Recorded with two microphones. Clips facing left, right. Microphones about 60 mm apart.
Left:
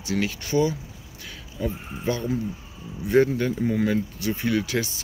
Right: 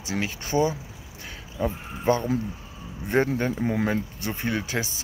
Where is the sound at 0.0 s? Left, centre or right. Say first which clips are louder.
Left 3 dB; right.